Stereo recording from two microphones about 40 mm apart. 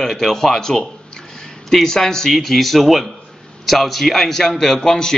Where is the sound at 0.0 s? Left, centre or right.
Centre.